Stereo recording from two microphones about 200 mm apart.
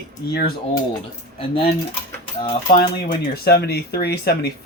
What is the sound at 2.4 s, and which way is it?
Speech, 25° left (ahead or behind).